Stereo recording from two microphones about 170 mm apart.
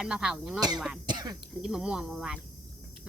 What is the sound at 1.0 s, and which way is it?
Speech, 25° right (ahead or behind).